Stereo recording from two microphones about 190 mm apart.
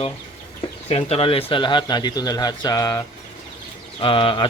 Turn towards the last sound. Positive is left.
turn(degrees=25)  # may be behind; listen again after turning